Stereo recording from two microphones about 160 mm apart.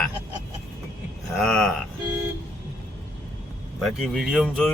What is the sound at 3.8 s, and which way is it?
Speech, centre (ahead or behind).